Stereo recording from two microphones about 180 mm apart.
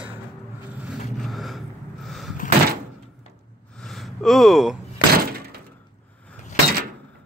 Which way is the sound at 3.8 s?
Centre (ahead or behind).